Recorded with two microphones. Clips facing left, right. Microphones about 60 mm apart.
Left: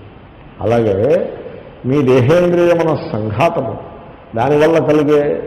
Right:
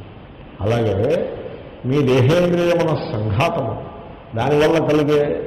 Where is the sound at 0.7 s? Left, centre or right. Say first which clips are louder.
Left 6 dB; left.